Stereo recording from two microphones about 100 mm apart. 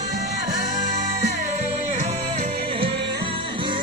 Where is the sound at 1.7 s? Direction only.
90° right.